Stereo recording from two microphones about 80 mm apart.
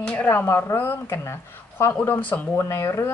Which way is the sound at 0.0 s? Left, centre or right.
Centre.